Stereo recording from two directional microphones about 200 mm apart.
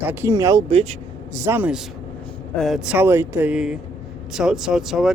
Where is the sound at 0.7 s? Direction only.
30° right (ahead or behind).